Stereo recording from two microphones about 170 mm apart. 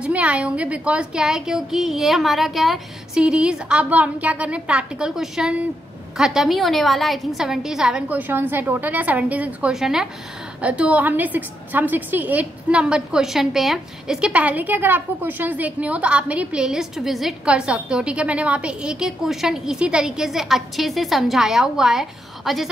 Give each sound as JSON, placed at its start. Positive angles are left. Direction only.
{"t": 0.0, "sound": "a woman's voice", "side_deg": -10}